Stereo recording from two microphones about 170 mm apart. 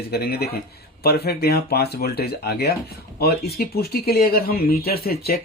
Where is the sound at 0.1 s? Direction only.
65° left (ahead or behind).